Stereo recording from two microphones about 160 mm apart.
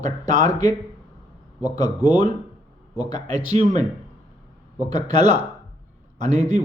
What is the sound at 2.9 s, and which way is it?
Speech, 25° left (ahead or behind).